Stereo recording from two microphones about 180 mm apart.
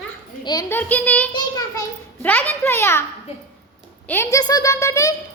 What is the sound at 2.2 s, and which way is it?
Speech, 10° left (ahead or behind).